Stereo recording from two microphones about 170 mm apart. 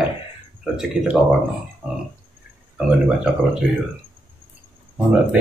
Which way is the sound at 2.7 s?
5° right (ahead or behind).